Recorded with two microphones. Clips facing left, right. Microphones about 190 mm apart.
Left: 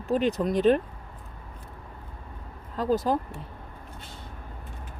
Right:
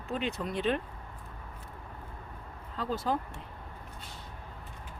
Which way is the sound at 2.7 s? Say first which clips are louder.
Left 7 dB; 45° left (ahead or behind).